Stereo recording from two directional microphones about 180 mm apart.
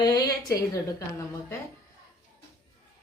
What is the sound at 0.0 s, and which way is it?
A woman's voice, 20° left (ahead or behind).